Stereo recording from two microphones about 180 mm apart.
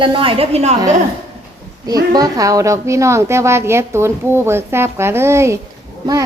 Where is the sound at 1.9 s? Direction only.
20° right (ahead or behind).